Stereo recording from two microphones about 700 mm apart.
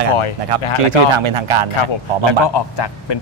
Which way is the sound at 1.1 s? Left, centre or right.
Right.